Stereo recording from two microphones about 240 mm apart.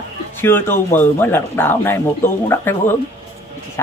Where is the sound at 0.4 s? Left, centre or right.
Centre.